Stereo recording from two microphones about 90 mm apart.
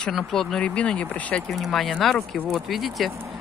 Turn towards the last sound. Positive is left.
turn(degrees=0)  # may be behind; listen again after turning